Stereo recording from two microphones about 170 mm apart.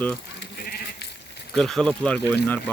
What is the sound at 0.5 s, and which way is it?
Sheep, 65° left (ahead or behind).